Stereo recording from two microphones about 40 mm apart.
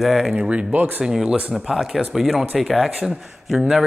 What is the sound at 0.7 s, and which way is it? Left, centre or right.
Speech, right.